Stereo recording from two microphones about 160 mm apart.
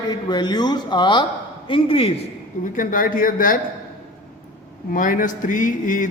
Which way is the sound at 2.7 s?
60° left (ahead or behind).